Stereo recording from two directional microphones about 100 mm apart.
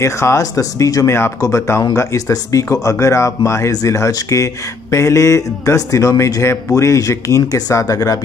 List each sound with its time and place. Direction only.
0.0 s speech: 30° left (ahead or behind)